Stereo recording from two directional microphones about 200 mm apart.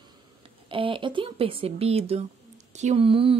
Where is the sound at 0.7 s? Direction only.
25° right (ahead or behind).